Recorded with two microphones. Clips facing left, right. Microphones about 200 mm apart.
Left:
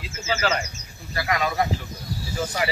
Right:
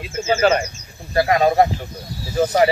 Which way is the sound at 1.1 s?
35° right (ahead or behind).